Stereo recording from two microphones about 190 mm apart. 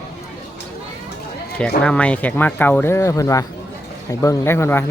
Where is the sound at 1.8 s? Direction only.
5° left (ahead or behind).